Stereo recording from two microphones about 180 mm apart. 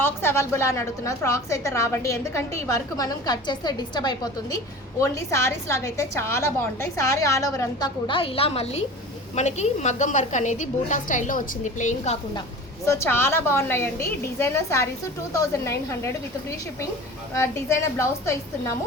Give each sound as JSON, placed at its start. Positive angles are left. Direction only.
{"t": 0.0, "sound": "a woman's voice", "side_deg": 15}
{"t": 12.8, "sound": "a woman's voice", "side_deg": 15}
{"t": 17.3, "sound": "a woman's voice", "side_deg": 15}